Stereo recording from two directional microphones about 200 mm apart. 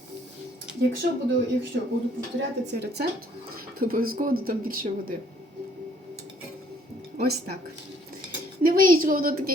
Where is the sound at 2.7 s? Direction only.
55° right (ahead or behind).